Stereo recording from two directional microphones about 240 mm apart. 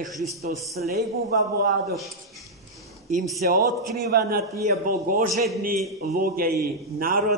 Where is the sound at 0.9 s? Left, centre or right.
Right.